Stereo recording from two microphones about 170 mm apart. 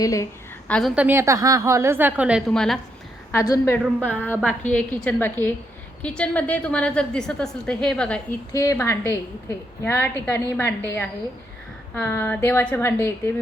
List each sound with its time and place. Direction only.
0.0 s a woman's voice: 20° left (ahead or behind)
0.7 s a woman's voice: centre (ahead or behind)
1.0 s a woman's voice: 15° right (ahead or behind); by 2.8 s 5° left (ahead or behind)
3.3 s a woman's voice: 20° left (ahead or behind)
8.5 s a woman's voice: 15° left (ahead or behind)